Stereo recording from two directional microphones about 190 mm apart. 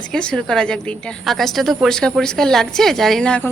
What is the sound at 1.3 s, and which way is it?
A woman's voice, centre (ahead or behind).